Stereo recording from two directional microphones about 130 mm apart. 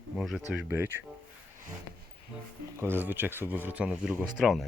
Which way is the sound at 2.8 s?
15° right (ahead or behind).